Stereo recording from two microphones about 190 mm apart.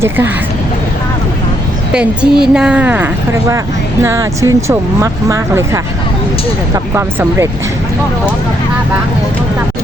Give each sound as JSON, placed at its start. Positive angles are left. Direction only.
{"t": 1.9, "sound": "a woman's voice", "side_deg": -5}